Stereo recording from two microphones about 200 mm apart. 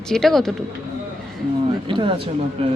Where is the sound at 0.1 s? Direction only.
Centre (ahead or behind).